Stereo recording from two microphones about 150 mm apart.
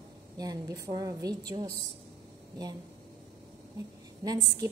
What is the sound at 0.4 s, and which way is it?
A woman's voice, 25° right (ahead or behind).